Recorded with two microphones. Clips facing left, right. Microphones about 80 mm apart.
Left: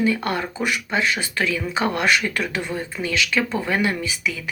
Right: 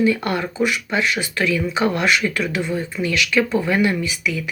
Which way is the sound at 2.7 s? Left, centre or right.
Left.